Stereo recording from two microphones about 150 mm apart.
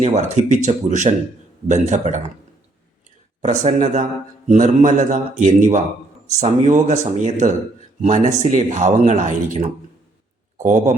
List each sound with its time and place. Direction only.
0.0 s speech: 50° right (ahead or behind)
3.4 s a man's voice: 50° right (ahead or behind)